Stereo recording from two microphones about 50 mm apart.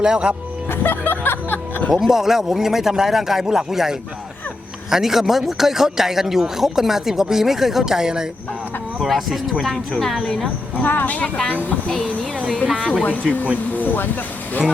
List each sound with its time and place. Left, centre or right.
0.0 s a man's voice: centre
0.7 s music: left
1.9 s a man's voice: centre
9.0 s speech: centre
10.8 s speech: left
11.9 s speech: left
13.7 s speech: left